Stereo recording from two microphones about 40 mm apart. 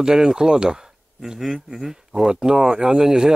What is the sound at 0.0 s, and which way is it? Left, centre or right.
Speech, centre.